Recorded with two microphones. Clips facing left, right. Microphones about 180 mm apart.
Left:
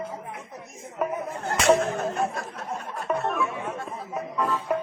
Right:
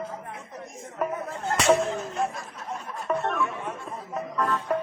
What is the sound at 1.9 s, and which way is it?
Speech, 65° left (ahead or behind).